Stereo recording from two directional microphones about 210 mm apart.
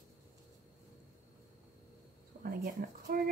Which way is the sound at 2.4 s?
45° right (ahead or behind).